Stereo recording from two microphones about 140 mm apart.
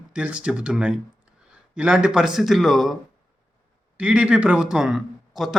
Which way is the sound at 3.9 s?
10° right (ahead or behind).